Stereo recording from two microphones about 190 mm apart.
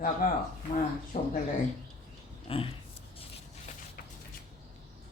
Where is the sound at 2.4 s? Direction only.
30° left (ahead or behind).